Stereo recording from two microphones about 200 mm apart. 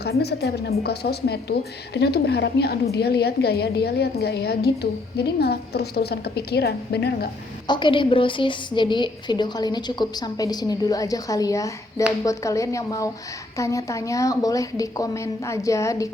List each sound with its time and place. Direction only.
0.0 s a woman's voice: 55° left (ahead or behind)
7.7 s a woman's voice: 25° left (ahead or behind)